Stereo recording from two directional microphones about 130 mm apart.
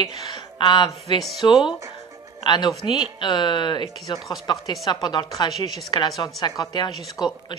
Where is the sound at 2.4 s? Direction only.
35° left (ahead or behind).